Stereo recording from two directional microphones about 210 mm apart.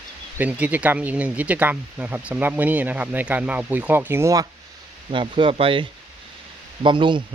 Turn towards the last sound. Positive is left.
turn(degrees=-20)  # may be behind; listen again after turning